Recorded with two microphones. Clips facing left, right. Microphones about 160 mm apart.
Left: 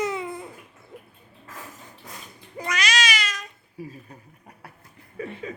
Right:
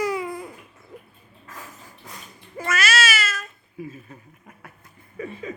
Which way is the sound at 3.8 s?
35° left (ahead or behind).